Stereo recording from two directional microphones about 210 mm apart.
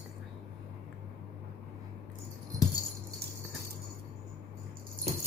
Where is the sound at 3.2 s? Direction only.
50° right (ahead or behind).